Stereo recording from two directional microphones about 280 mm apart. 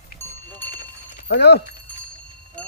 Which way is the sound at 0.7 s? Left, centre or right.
Left.